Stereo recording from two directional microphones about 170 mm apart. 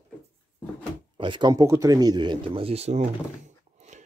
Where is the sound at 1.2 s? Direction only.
30° right (ahead or behind).